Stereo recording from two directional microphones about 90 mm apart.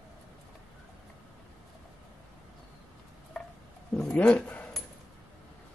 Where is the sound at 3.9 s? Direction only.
5° left (ahead or behind).